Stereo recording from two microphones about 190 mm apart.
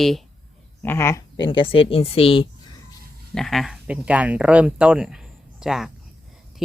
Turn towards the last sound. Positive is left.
turn(degrees=-5)  # may be behind; listen again after turning